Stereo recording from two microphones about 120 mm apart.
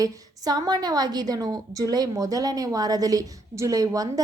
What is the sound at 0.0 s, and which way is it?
A woman's voice, 35° right (ahead or behind).